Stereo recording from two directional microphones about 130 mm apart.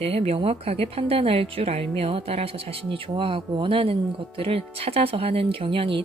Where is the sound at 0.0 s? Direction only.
50° right (ahead or behind).